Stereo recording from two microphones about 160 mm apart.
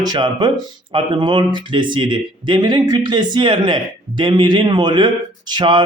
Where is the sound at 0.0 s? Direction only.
25° right (ahead or behind).